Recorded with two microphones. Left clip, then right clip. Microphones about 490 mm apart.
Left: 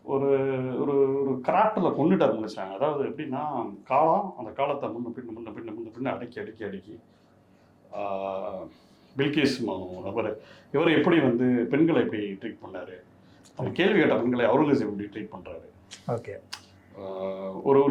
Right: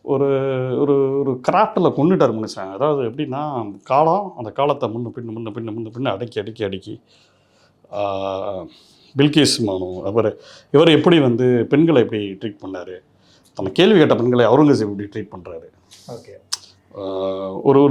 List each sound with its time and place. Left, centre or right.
0.1 s speech: right
7.9 s speech: right
17.0 s speech: right